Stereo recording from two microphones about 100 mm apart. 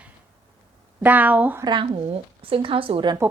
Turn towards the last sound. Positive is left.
turn(degrees=-55)  # may be behind; listen again after turning